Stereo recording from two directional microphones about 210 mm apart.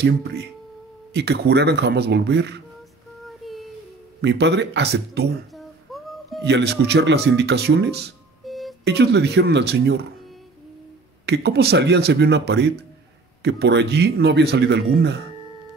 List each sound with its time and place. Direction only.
1.1 s speech: 50° right (ahead or behind)
3.3 s child singing: centre (ahead or behind)
4.2 s speech: 55° right (ahead or behind)
5.6 s music: centre (ahead or behind)
6.4 s speech: 55° right (ahead or behind)
8.5 s a sound: centre (ahead or behind)
8.8 s speech: 55° right (ahead or behind)
11.2 s speech: 50° right (ahead or behind)